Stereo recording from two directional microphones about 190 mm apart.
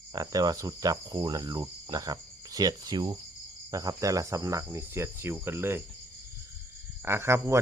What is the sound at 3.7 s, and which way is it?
Cricket, 15° right (ahead or behind).